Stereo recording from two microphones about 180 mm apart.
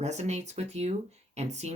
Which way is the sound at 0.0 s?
40° right (ahead or behind).